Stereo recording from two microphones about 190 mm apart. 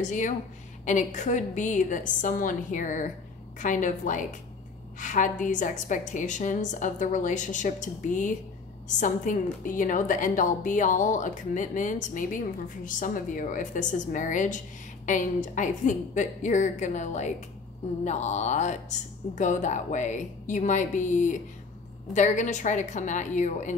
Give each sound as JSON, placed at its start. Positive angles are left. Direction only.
{"t": 0.0, "sound": "a woman's voice", "side_deg": 40}